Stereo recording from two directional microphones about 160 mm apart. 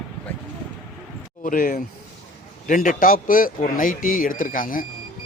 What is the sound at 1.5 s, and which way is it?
A man's voice, 60° left (ahead or behind).